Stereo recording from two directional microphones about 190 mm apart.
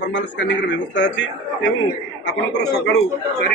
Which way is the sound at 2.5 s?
60° left (ahead or behind).